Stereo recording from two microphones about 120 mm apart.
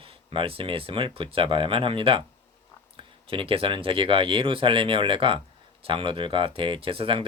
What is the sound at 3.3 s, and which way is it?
Speech, 50° right (ahead or behind).